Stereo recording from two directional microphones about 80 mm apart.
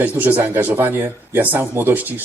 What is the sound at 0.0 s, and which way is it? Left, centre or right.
Speech, right.